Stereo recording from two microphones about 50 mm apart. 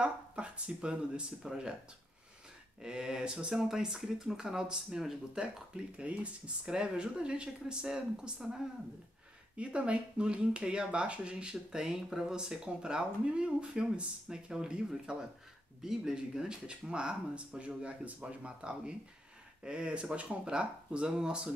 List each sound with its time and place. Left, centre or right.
0.0 s speech: right
2.8 s speech: centre
5.9 s speech: right
9.6 s speech: right